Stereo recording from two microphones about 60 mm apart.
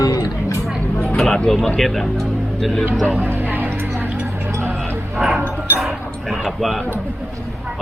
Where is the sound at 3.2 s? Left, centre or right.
Right.